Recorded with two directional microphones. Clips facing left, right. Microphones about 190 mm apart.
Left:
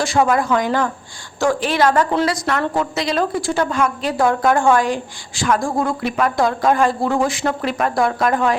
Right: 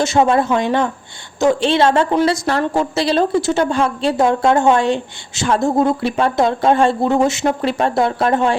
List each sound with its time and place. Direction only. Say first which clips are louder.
0.0 s speech: right 3 dB; 25° right (ahead or behind)